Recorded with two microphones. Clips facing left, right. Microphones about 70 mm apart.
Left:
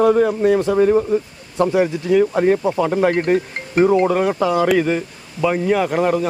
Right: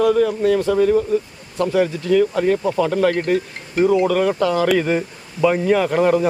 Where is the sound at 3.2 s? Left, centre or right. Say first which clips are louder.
Left 2 dB; left; by 6.2 s centre.